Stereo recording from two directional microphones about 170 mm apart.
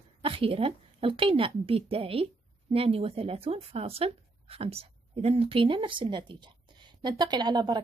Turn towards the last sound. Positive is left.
turn(degrees=-25)  # may be behind; listen again after turning